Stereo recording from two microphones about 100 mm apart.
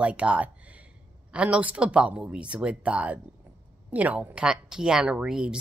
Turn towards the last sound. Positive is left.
turn(degrees=-5)  # may be behind; listen again after turning